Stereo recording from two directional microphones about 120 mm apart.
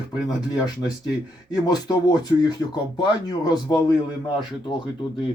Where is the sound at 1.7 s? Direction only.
35° left (ahead or behind).